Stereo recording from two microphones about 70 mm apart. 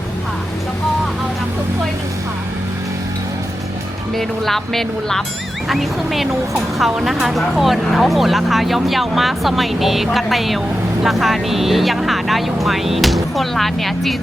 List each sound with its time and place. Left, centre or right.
4.1 s speech: centre